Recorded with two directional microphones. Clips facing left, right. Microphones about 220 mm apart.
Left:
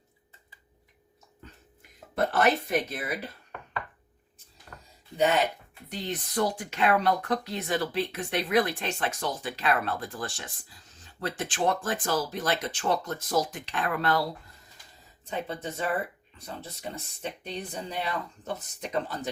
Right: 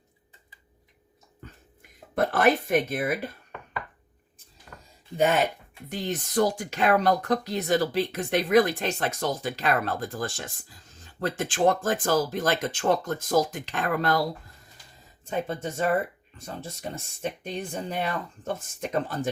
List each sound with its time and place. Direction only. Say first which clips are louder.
2.1 s speech: right 3 dB; 50° right (ahead or behind)
5.9 s speech: right 4 dB; 45° right (ahead or behind)
15.3 s speech: right 4 dB; 45° right (ahead or behind)
17.4 s speech: right 4 dB; 50° right (ahead or behind)